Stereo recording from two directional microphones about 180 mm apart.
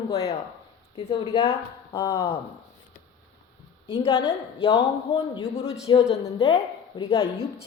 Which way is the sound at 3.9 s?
30° left (ahead or behind).